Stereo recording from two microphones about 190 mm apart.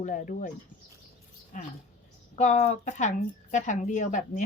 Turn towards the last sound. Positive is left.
turn(degrees=40)  # may be behind; listen again after turning